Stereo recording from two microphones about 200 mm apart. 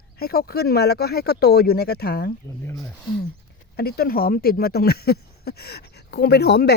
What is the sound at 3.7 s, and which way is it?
Speech, 50° left (ahead or behind).